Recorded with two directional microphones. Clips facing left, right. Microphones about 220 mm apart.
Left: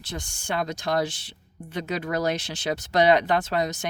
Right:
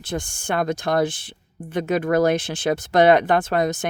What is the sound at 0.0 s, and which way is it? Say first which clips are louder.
Speech: right 8 dB; 50° right (ahead or behind).